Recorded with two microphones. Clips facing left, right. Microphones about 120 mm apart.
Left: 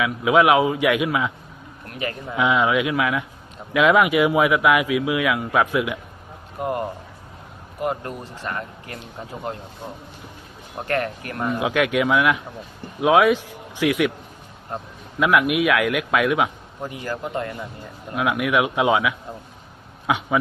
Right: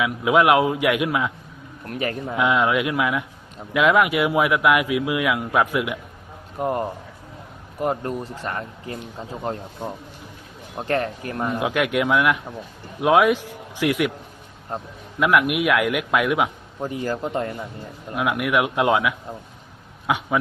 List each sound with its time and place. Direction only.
0.0 s speech: 5° right (ahead or behind)
1.9 s speech: 35° right (ahead or behind)
2.3 s speech: centre (ahead or behind)
7.8 s speech: 35° right (ahead or behind)
10.8 s speech: 25° right (ahead or behind)
11.4 s a man's voice: 5° right (ahead or behind)
15.2 s speech: centre (ahead or behind)
16.9 s speech: 35° right (ahead or behind)
18.1 s speech: centre (ahead or behind)